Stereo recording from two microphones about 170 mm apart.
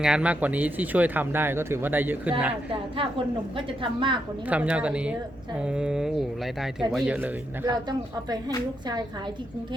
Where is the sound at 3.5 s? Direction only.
30° right (ahead or behind).